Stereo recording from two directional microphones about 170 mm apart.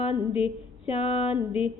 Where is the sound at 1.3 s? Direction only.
10° right (ahead or behind).